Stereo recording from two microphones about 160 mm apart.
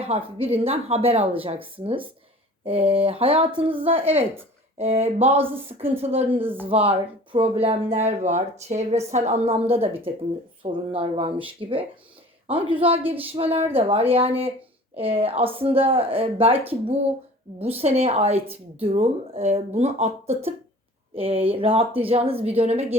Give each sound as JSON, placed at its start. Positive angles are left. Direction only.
{"t": 0.0, "sound": "speech", "side_deg": -35}
{"t": 6.4, "sound": "speech", "side_deg": -10}
{"t": 6.7, "sound": "speech", "side_deg": -35}
{"t": 17.6, "sound": "speech", "side_deg": -40}